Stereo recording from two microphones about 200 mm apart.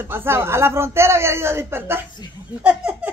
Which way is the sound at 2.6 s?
5° right (ahead or behind).